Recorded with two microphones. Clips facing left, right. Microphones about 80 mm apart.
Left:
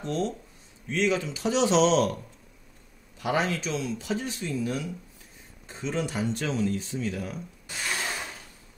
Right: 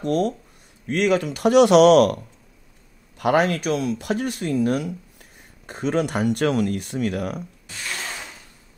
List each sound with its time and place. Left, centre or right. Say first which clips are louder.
0.0 s speech: right 7 dB; right
3.2 s speech: right 8 dB; right
7.6 s a sound: left 3 dB; centre